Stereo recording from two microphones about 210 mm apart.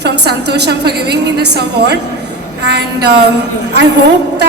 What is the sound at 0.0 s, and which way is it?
A woman's voice, 55° right (ahead or behind).